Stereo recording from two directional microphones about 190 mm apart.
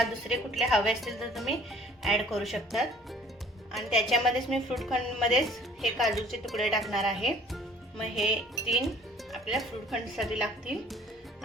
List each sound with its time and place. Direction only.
0.0 s a woman's voice: centre (ahead or behind)